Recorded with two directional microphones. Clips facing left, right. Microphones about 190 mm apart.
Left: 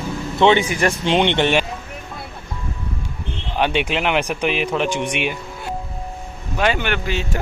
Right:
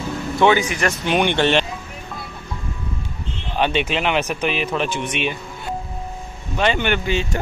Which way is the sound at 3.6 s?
15° left (ahead or behind).